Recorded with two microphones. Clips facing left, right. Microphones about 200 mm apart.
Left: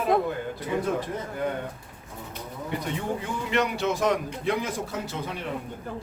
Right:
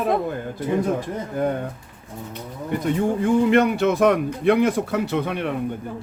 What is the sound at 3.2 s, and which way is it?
Speech, 55° right (ahead or behind).